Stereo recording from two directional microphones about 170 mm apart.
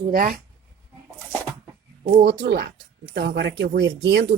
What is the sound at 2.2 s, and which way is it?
Speech, 80° right.